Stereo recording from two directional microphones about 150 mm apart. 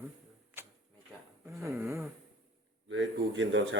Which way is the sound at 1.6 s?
20° right (ahead or behind).